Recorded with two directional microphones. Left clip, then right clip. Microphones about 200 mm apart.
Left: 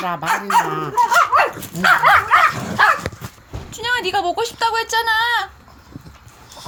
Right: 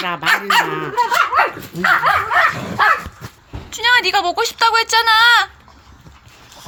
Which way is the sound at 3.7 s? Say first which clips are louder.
Right 6 dB; 20° left (ahead or behind).